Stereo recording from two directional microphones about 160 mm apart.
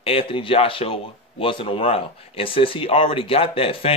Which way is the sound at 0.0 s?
35° left (ahead or behind).